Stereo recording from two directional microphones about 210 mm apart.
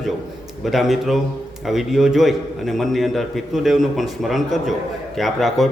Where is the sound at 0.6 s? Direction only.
Centre (ahead or behind).